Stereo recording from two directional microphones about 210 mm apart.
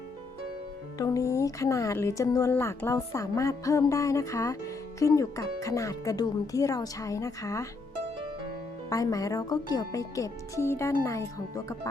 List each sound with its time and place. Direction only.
0.9 s speech: 15° left (ahead or behind)
8.9 s speech: 15° left (ahead or behind)